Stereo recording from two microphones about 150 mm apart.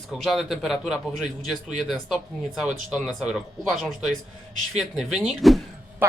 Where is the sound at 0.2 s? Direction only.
Centre (ahead or behind).